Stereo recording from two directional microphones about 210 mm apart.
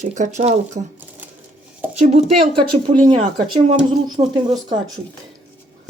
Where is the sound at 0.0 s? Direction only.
35° right (ahead or behind).